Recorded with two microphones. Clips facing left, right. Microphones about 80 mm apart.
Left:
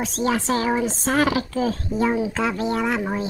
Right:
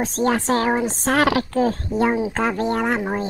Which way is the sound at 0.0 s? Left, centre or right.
Right.